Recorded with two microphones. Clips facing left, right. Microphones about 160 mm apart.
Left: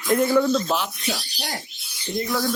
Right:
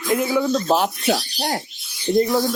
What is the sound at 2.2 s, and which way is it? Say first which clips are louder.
Speech: right 7 dB; 30° right (ahead or behind).